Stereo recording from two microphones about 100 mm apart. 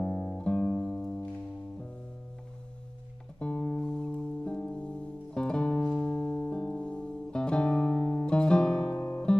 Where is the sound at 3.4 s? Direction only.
10° left (ahead or behind).